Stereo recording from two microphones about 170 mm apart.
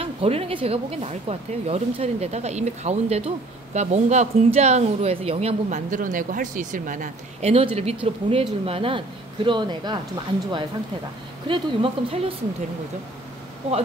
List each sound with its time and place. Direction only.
0.0 s speech: 35° right (ahead or behind)
7.5 s speech: 35° right (ahead or behind)
11.4 s speech: 30° right (ahead or behind)